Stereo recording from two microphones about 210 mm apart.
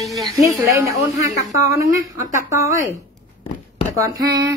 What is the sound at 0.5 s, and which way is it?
A woman's voice, 15° right (ahead or behind).